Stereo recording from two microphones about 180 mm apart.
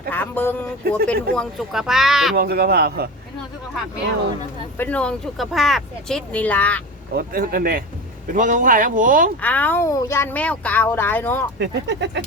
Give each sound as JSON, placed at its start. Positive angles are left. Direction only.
{"t": 0.1, "sound": "speech", "side_deg": 10}
{"t": 2.3, "sound": "a man's voice", "side_deg": -60}
{"t": 4.8, "sound": "speech", "side_deg": 5}
{"t": 7.1, "sound": "speech", "side_deg": -55}
{"t": 9.4, "sound": "speech", "side_deg": 10}
{"t": 11.6, "sound": "speech", "side_deg": -75}